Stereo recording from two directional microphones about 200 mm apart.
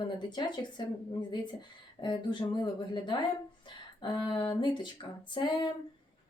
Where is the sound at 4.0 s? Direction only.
20° left (ahead or behind).